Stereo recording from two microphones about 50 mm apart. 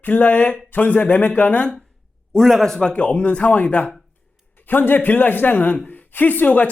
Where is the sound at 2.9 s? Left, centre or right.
Left.